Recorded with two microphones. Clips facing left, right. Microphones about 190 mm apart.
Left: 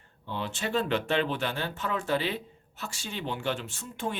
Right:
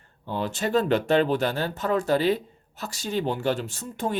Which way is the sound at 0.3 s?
40° right (ahead or behind).